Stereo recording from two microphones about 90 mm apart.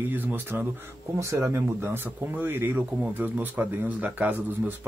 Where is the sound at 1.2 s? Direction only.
35° right (ahead or behind); by 4.3 s 15° right (ahead or behind).